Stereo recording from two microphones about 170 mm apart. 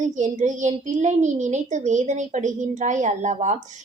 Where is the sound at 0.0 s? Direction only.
45° right (ahead or behind).